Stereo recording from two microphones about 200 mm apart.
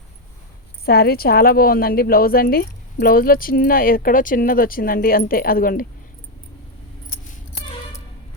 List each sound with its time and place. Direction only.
0.9 s a woman's voice: 50° left (ahead or behind)